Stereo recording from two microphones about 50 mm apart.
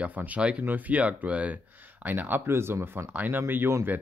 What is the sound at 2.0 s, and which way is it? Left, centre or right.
Speech, right.